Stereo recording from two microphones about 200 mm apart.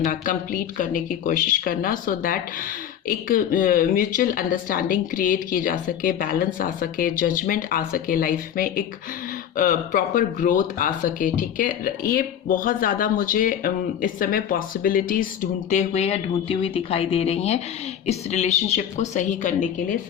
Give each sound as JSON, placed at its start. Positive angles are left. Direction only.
{"t": 0.0, "sound": "a woman's voice", "side_deg": 45}